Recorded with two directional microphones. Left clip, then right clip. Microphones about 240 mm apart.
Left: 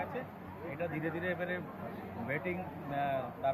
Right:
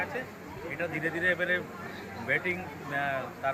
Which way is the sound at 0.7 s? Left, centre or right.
Right.